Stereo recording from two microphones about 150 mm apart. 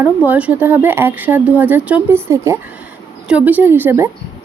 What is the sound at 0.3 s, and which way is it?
A woman's voice, 10° right (ahead or behind).